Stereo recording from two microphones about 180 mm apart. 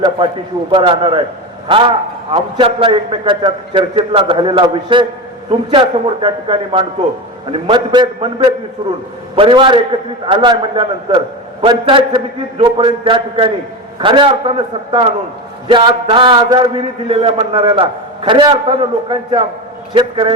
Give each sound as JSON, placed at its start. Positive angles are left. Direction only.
{"t": 0.7, "sound": "a man's voice", "side_deg": -30}
{"t": 15.7, "sound": "a man's voice", "side_deg": -30}